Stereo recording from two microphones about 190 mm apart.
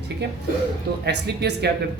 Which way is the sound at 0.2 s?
60° right (ahead or behind).